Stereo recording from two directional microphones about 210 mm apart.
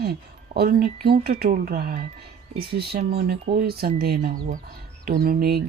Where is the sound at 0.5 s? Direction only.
45° right (ahead or behind).